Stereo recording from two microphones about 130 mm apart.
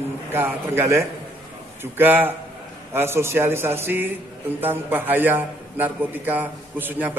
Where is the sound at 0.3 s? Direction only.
15° right (ahead or behind).